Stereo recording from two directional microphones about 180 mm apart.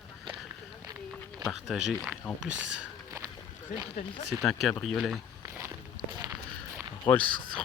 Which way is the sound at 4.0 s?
45° left (ahead or behind).